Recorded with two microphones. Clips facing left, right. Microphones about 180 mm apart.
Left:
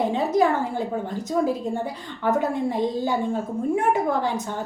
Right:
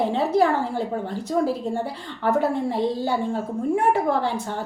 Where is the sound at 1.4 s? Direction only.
20° left (ahead or behind).